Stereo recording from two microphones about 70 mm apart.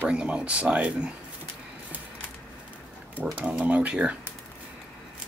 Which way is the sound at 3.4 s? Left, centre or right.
Right.